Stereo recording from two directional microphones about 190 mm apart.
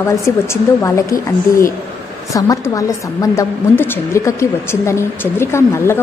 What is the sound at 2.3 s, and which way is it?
A woman's voice, 15° left (ahead or behind).